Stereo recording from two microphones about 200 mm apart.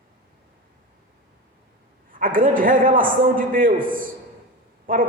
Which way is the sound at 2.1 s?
45° right (ahead or behind).